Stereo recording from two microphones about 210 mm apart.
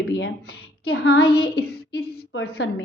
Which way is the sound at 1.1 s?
50° left (ahead or behind).